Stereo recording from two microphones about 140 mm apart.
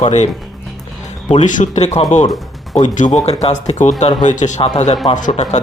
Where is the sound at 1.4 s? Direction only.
60° left (ahead or behind).